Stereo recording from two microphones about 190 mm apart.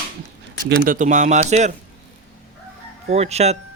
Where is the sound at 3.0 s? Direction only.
35° right (ahead or behind).